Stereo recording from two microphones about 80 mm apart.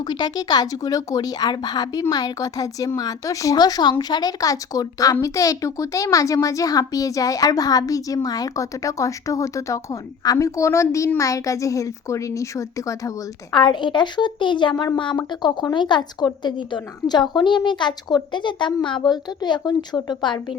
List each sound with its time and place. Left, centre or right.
0.0 s a woman's voice: left
13.5 s speech: left
15.3 s speech: left